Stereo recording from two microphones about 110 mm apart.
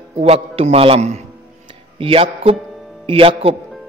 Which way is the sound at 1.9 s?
55° right (ahead or behind).